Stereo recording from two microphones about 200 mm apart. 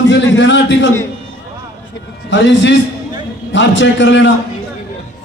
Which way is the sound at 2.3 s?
65° left (ahead or behind).